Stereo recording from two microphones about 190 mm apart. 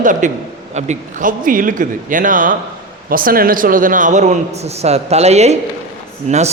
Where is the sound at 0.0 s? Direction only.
45° right (ahead or behind).